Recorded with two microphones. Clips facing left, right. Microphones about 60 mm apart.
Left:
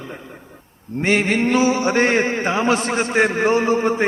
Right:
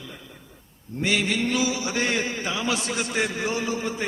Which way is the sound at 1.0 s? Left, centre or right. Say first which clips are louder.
Left 6 dB; left.